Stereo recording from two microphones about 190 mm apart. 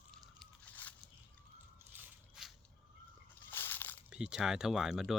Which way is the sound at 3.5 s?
10° left (ahead or behind).